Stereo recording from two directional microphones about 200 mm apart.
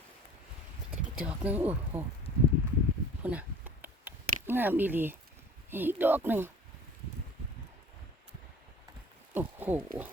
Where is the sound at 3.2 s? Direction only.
10° right (ahead or behind).